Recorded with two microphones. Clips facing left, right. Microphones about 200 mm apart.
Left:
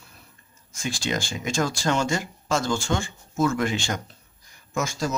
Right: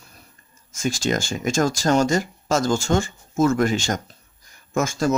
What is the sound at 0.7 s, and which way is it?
Speech, 45° right (ahead or behind).